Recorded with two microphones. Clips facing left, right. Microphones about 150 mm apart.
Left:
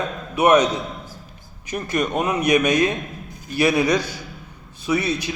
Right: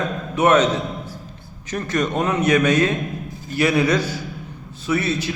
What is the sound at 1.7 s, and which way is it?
A man's voice, 10° left (ahead or behind).